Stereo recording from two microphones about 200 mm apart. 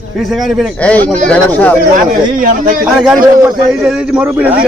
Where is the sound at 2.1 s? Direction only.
40° right (ahead or behind).